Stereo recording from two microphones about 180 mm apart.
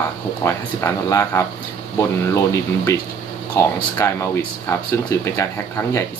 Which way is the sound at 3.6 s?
15° left (ahead or behind).